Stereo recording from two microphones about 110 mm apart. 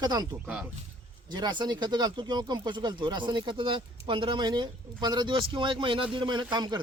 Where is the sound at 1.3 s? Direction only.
40° right (ahead or behind).